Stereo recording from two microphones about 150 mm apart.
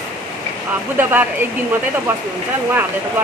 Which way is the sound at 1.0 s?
15° right (ahead or behind).